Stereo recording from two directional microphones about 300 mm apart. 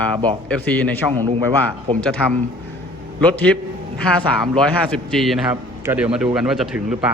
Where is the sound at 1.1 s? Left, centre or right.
Centre.